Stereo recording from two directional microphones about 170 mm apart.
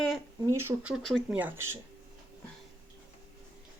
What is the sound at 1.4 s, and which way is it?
Speech, 15° right (ahead or behind).